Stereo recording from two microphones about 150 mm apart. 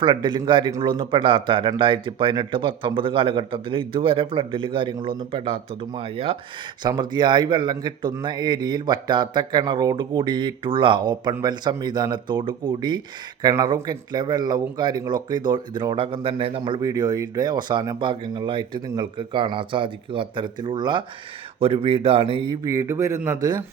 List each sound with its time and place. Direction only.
0.0 s speech: 30° right (ahead or behind)
22.6 s speech: 20° right (ahead or behind)